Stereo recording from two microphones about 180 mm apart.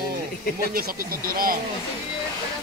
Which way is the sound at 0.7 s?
55° right (ahead or behind).